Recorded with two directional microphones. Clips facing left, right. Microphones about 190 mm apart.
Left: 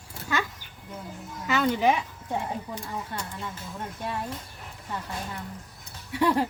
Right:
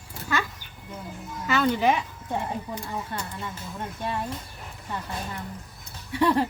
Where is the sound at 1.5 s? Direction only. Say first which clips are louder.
Right 1 dB; 15° left (ahead or behind).